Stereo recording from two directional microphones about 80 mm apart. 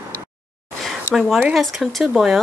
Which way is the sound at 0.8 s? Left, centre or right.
Centre.